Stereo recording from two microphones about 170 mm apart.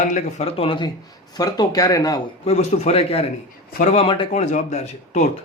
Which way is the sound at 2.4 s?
40° left (ahead or behind).